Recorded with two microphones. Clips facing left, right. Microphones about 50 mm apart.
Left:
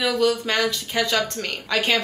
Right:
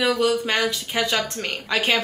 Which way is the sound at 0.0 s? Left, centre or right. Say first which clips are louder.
Right 1 dB; centre.